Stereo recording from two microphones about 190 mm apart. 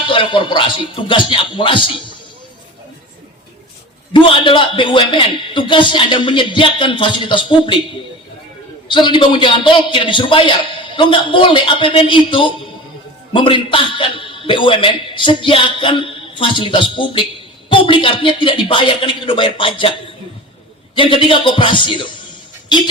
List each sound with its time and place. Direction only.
0.1 s a man's voice: 25° left (ahead or behind)
4.1 s a man's voice: 25° left (ahead or behind)
8.9 s a man's voice: 25° left (ahead or behind)
20.9 s a man's voice: 25° left (ahead or behind)